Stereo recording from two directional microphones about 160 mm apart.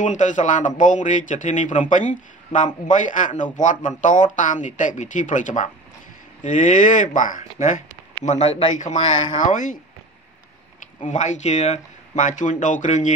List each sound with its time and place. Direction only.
0.0 s a man's voice: 50° left (ahead or behind)
8.4 s a man's voice: 30° left (ahead or behind)
8.7 s a man's voice: 50° left (ahead or behind)
11.1 s a man's voice: 50° left (ahead or behind)